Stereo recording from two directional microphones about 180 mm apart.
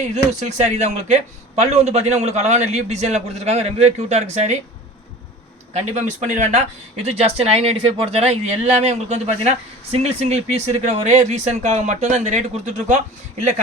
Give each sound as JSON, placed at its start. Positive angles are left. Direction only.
{"t": 0.1, "sound": "speech", "side_deg": -40}
{"t": 5.7, "sound": "speech", "side_deg": -40}